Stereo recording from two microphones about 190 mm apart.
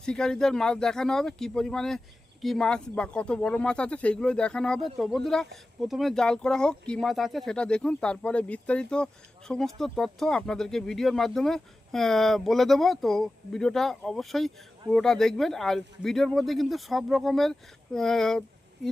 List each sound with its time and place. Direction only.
0.0 s speech: 5° left (ahead or behind)